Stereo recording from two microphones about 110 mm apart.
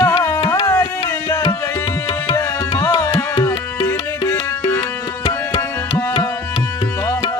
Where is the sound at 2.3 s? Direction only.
30° left (ahead or behind).